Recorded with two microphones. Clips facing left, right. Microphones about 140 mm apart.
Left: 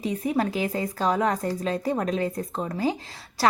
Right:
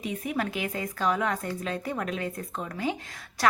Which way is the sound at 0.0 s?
30° left (ahead or behind).